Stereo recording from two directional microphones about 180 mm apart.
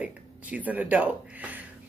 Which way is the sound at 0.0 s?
10° right (ahead or behind).